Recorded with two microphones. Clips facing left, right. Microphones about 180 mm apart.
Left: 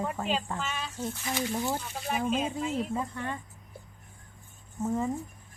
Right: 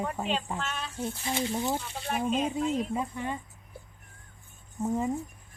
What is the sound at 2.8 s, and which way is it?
Speech, 15° right (ahead or behind).